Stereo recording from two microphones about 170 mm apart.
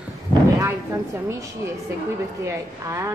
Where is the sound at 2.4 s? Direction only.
15° right (ahead or behind).